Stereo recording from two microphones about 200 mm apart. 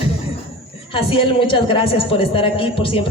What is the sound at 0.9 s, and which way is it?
A woman's voice, 25° left (ahead or behind).